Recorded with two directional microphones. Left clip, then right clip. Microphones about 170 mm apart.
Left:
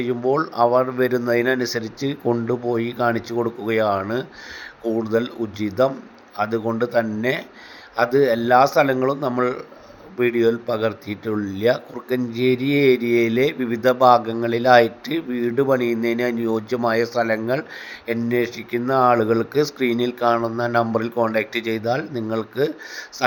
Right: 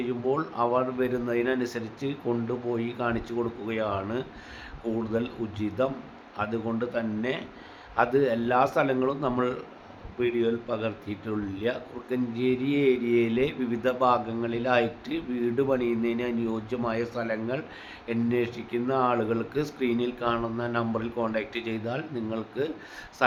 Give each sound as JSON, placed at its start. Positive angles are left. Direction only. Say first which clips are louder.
{"t": 0.0, "sound": "speech", "louder": "left 8 dB", "side_deg": 30}